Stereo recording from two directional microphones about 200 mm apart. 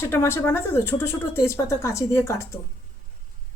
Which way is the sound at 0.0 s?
10° left (ahead or behind).